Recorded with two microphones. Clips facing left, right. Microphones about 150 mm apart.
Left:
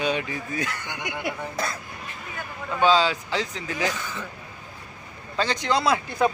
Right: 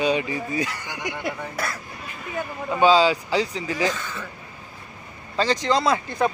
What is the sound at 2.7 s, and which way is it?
Speech, 10° right (ahead or behind).